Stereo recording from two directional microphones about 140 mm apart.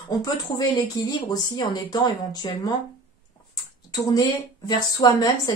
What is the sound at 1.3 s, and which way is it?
A woman's voice, 30° left (ahead or behind).